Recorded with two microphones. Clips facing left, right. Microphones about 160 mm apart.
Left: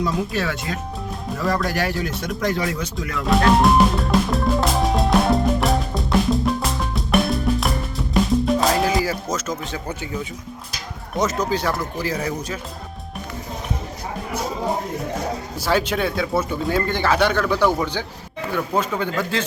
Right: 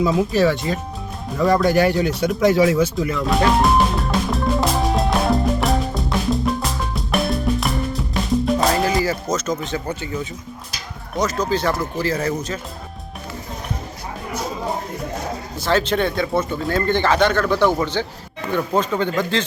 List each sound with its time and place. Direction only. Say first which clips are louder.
0.0 s speech: right 6 dB; centre (ahead or behind)
1.5 s bird: right 7 dB; centre (ahead or behind)
11.2 s speech: even; 20° left (ahead or behind)
11.5 s speech: right 2 dB; 5° left (ahead or behind)
11.9 s speech: right 3 dB; 15° left (ahead or behind)
15.6 s speech: right 2 dB; 10° left (ahead or behind)